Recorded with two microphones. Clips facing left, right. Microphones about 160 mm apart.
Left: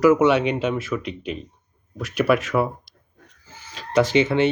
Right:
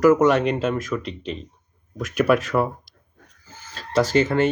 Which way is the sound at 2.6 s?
10° left (ahead or behind).